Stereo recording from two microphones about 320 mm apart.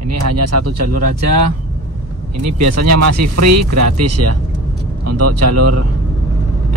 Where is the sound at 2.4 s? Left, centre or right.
Right.